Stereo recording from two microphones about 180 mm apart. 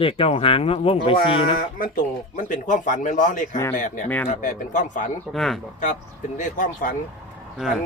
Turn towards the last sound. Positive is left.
turn(degrees=0)  # may be behind; listen again after turning